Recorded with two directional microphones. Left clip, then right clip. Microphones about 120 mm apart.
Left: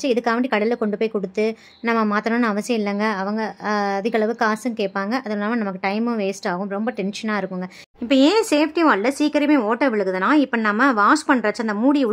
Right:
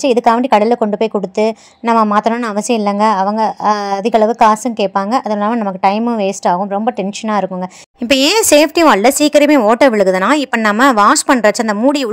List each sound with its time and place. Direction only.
0.0 s a woman's voice: 45° right (ahead or behind)
8.1 s a woman's voice: 55° right (ahead or behind)